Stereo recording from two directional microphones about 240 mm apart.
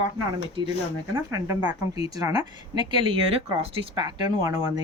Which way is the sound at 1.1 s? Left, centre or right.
Centre.